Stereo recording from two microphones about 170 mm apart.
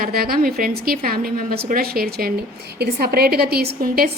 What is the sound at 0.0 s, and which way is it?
A woman's voice, 60° right (ahead or behind).